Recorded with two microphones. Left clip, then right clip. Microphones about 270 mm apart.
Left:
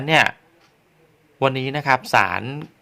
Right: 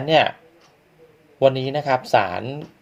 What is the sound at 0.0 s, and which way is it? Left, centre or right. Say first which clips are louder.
Speech: even; left.